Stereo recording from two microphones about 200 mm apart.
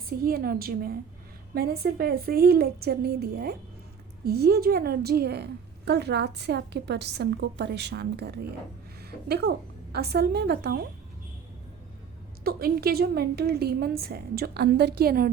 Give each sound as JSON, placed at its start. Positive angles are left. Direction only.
{"t": 0.1, "sound": "a woman's voice", "side_deg": -45}
{"t": 12.4, "sound": "a woman's voice", "side_deg": -50}